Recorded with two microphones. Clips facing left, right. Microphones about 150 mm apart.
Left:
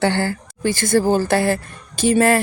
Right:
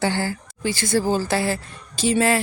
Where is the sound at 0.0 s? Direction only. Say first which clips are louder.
Left 4 dB; 60° left (ahead or behind).